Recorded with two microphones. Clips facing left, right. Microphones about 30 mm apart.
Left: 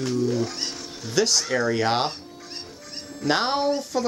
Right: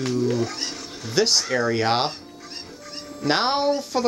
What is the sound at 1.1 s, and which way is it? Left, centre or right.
Speech, right.